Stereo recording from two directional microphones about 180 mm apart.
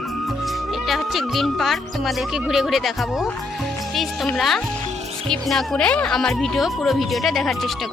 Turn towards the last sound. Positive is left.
turn(degrees=0)  # may be behind; listen again after turning